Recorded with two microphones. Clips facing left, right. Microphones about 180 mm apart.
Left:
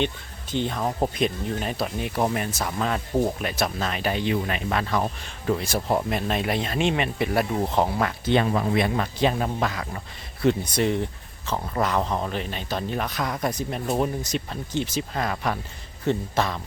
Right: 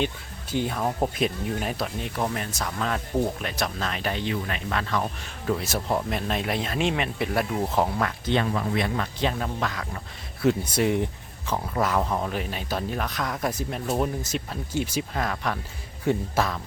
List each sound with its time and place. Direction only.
0.5 s speech: 5° right (ahead or behind)
2.1 s speech: 10° left (ahead or behind)
4.2 s speech: 15° left (ahead or behind)
5.5 s speech: centre (ahead or behind)
10.4 s speech: 5° right (ahead or behind)
15.1 s speech: 5° left (ahead or behind)